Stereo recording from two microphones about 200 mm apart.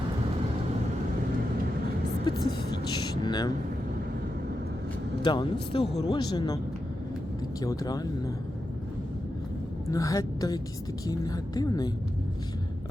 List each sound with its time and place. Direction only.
3.2 s a woman's voice: 20° left (ahead or behind)
5.2 s a woman's voice: 25° left (ahead or behind)
7.6 s a woman's voice: 20° left (ahead or behind)
9.9 s a woman's voice: 15° left (ahead or behind)